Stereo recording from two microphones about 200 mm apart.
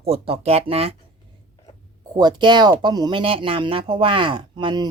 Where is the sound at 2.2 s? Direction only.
20° right (ahead or behind).